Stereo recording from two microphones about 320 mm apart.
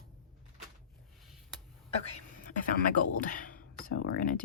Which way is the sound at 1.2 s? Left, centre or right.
Centre.